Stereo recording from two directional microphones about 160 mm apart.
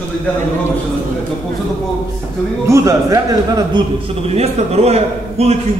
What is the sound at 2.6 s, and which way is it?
Speech, 20° right (ahead or behind).